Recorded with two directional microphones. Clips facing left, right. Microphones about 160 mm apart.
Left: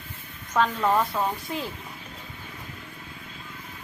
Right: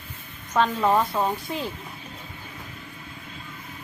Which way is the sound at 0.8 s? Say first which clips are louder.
Right 2 dB; 10° right (ahead or behind).